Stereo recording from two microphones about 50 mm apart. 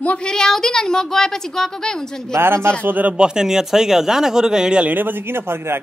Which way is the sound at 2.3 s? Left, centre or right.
Right.